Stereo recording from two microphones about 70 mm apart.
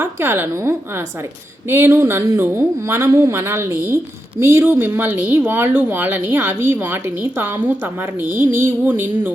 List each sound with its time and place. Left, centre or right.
0.0 s a woman's voice: right